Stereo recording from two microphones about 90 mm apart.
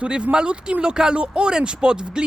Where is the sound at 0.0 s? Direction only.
10° right (ahead or behind).